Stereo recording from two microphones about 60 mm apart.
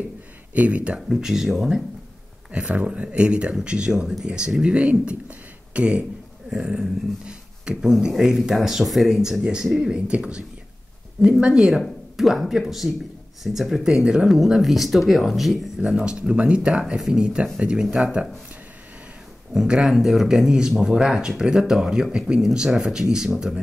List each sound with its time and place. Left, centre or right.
0.6 s speech: right
1.0 s speech: centre
2.5 s speech: centre
15.9 s speech: centre
19.5 s speech: centre